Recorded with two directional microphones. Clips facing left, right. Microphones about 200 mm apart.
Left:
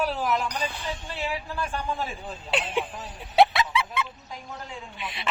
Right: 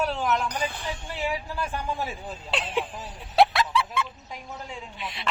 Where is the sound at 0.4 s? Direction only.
55° right (ahead or behind).